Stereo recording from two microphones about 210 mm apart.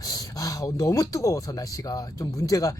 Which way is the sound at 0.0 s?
15° left (ahead or behind).